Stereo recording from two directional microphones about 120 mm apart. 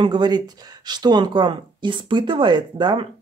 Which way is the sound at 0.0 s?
40° right (ahead or behind).